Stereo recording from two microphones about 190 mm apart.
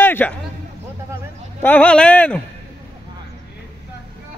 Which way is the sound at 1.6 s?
10° left (ahead or behind).